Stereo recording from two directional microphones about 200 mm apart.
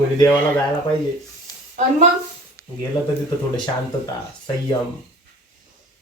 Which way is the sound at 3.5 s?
20° left (ahead or behind).